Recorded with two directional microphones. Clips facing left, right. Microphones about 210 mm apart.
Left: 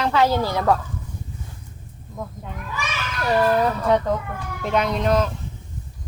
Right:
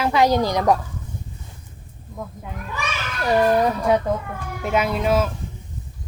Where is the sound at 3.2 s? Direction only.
15° right (ahead or behind).